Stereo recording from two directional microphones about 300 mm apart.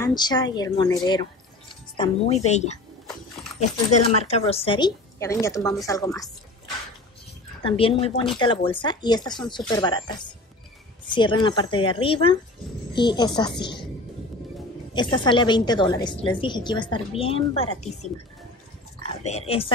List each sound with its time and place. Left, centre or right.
0.0 s a woman's voice: centre
4.2 s a woman's voice: left
7.6 s a woman's voice: centre
15.0 s a woman's voice: centre
19.2 s speech: centre